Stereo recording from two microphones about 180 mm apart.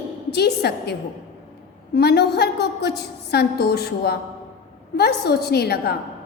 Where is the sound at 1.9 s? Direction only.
65° left (ahead or behind).